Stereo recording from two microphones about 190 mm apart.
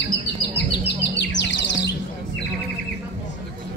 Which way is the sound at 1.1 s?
70° left (ahead or behind).